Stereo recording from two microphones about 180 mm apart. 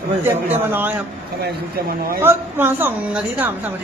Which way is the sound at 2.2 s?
10° right (ahead or behind).